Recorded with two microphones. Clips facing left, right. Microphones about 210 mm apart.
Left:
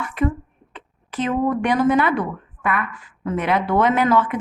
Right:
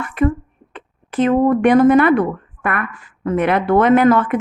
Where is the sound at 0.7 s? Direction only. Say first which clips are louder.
Right 6 dB; 55° right (ahead or behind).